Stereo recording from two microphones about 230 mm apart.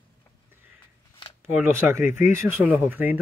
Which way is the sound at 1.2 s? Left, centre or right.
Centre.